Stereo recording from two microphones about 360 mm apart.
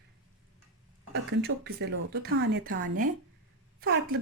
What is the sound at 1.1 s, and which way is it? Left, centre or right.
Speech, right.